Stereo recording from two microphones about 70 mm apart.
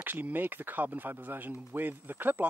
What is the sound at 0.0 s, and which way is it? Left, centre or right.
Speech, right.